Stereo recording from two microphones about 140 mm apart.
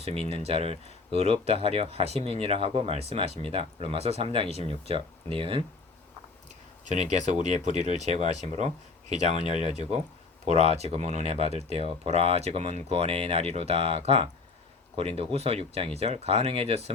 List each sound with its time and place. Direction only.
0.0 s speech: 45° right (ahead or behind)
4.4 s speech: 50° left (ahead or behind)
4.7 s speech: 40° right (ahead or behind)
6.8 s speech: 55° right (ahead or behind)